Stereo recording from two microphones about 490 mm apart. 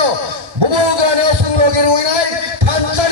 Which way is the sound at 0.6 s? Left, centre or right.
Right.